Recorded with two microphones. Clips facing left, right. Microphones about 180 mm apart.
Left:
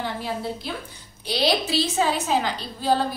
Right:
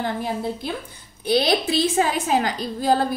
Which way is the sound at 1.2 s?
55° right (ahead or behind).